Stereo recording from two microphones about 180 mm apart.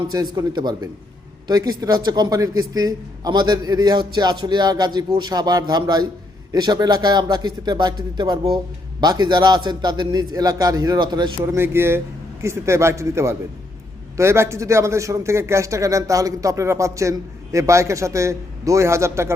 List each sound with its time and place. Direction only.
0.1 s a man's voice: 20° right (ahead or behind)